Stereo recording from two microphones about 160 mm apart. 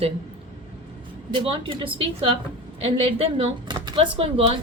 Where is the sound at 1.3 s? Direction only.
35° right (ahead or behind).